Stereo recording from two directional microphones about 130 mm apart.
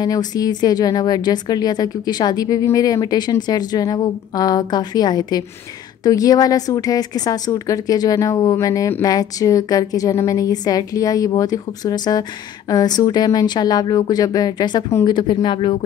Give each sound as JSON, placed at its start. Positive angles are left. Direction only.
{"t": 0.0, "sound": "a woman's voice", "side_deg": 30}
{"t": 15.1, "sound": "speech", "side_deg": 35}